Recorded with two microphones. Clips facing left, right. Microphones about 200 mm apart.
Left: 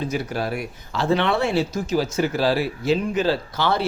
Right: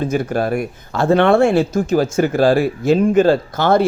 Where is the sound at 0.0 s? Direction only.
50° right (ahead or behind).